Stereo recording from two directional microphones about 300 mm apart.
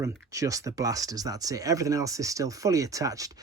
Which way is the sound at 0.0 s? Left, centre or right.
Centre.